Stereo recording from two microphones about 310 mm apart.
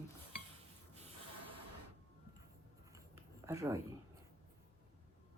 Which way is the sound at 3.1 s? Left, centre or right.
Centre.